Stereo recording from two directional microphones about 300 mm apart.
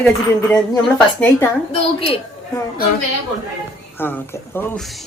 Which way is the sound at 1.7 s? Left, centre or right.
Centre.